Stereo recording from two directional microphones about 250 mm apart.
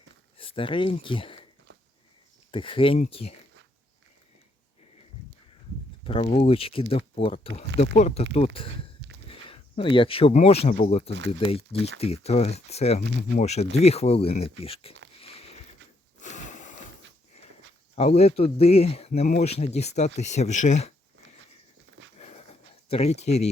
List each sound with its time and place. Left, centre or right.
0.3 s speech: left
2.5 s speech: left
6.1 s speech: left
9.0 s walk: right
9.3 s speech: left
13.0 s speech: right
13.4 s speech: left
15.2 s sniff: left
16.2 s snort: left
17.9 s speech: left
22.9 s speech: left